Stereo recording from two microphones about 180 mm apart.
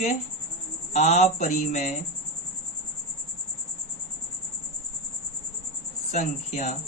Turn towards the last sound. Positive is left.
turn(degrees=40)  # may be behind; listen again after turning